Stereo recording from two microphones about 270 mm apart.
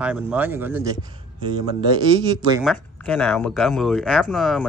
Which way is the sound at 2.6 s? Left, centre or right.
Centre.